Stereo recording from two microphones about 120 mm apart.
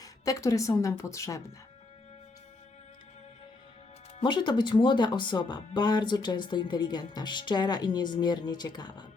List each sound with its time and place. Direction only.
0.0 s speech: 30° left (ahead or behind)
4.2 s speech: 40° left (ahead or behind)